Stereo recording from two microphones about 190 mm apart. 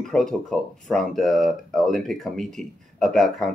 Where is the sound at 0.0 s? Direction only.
Centre (ahead or behind).